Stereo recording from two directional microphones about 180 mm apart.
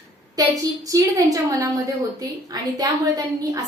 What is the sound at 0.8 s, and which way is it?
A woman's voice, 20° right (ahead or behind).